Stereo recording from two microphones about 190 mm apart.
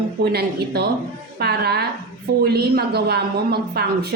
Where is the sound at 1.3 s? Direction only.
55° right (ahead or behind).